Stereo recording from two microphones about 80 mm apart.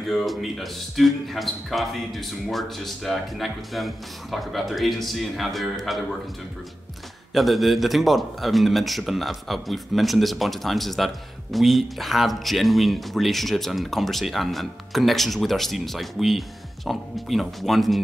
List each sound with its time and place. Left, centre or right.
0.1 s speech: centre
7.3 s speech: centre